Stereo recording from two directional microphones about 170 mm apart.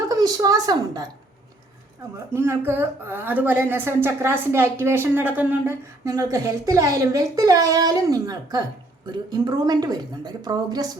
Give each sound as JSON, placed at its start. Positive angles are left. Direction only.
{"t": 0.1, "sound": "a woman's voice", "side_deg": -20}
{"t": 2.1, "sound": "a woman's voice", "side_deg": -15}